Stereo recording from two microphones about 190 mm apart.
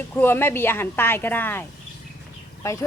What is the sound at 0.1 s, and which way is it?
Speech, 10° left (ahead or behind).